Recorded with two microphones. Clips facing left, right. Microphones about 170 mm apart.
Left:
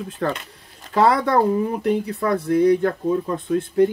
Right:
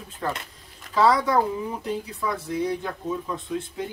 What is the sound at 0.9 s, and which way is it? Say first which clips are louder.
Speech: left 3 dB; 60° left (ahead or behind).